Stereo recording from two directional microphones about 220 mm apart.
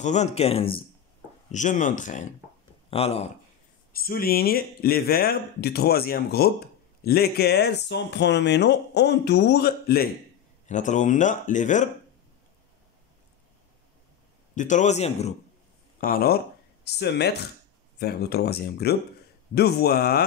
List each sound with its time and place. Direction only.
0.0 s speech: 30° left (ahead or behind)
3.9 s speech: 40° left (ahead or behind)
10.7 s speech: 35° left (ahead or behind)
14.5 s speech: 35° left (ahead or behind)
16.0 s speech: 40° left (ahead or behind)